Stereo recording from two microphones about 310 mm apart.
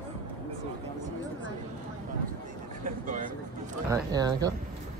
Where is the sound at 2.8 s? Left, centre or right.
Right.